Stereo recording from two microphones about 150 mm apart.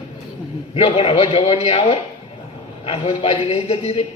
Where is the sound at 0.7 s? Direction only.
40° left (ahead or behind).